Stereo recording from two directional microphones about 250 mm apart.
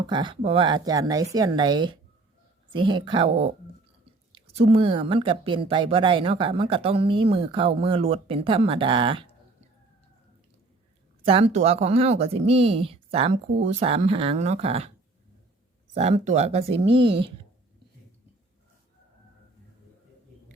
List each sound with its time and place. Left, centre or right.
0.1 s speech: centre
11.3 s speech: right
16.0 s speech: right